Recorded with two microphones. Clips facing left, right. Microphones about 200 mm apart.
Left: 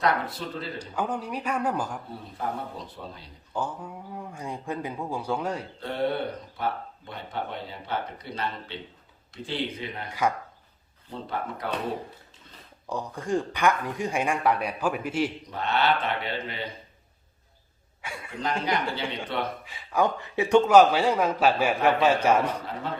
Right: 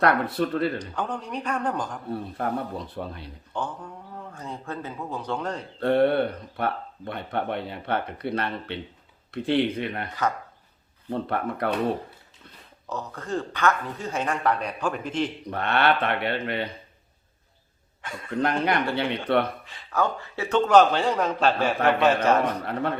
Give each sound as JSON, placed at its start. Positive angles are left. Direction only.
{"t": 0.0, "sound": "speech", "side_deg": -60}
{"t": 0.8, "sound": "speech", "side_deg": 10}
{"t": 2.4, "sound": "speech", "side_deg": -60}
{"t": 3.5, "sound": "speech", "side_deg": 10}
{"t": 5.8, "sound": "speech", "side_deg": -60}
{"t": 10.1, "sound": "speech", "side_deg": 10}
{"t": 11.1, "sound": "speech", "side_deg": -60}
{"t": 12.9, "sound": "speech", "side_deg": 15}
{"t": 15.4, "sound": "speech", "side_deg": -60}
{"t": 18.0, "sound": "speech", "side_deg": 10}
{"t": 18.3, "sound": "speech", "side_deg": -60}
{"t": 19.6, "sound": "speech", "side_deg": 10}
{"t": 22.6, "sound": "speech", "side_deg": -60}